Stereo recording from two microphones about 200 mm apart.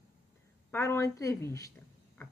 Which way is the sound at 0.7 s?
15° left (ahead or behind).